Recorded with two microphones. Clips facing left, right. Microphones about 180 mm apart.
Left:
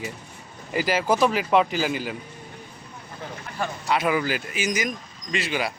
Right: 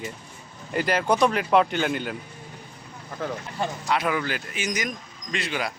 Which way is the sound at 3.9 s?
5° left (ahead or behind).